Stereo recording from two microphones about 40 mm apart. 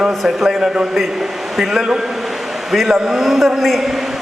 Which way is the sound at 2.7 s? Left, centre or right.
Centre.